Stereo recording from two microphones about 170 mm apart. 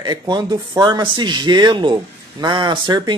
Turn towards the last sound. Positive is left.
turn(degrees=-25)  # may be behind; listen again after turning